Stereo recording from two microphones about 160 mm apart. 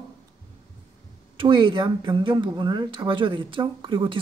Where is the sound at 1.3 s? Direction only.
30° right (ahead or behind).